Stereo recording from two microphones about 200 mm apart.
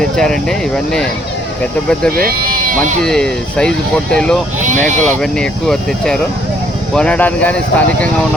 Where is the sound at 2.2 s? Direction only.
45° right (ahead or behind).